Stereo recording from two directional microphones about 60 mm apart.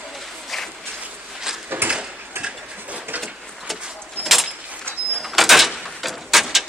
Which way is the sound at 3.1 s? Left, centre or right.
Right.